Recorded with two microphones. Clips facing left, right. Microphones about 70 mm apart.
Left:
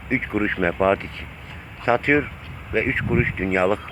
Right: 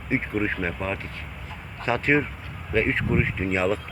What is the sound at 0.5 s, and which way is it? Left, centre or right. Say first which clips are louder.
Speech: left 9 dB; left.